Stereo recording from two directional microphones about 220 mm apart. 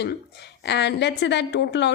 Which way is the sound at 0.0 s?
50° left (ahead or behind).